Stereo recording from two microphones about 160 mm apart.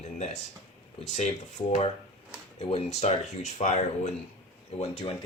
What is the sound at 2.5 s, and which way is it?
Speech, 45° left (ahead or behind).